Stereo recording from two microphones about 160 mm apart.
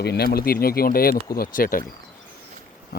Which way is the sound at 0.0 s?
85° left.